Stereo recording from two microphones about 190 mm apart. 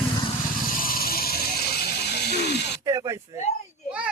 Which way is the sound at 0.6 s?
50° left (ahead or behind).